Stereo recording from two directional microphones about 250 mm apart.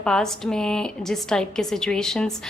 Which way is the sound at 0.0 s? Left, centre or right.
Centre.